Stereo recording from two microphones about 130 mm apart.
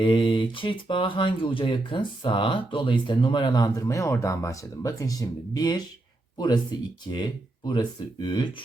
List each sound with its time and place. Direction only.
0.0 s speech: 40° left (ahead or behind)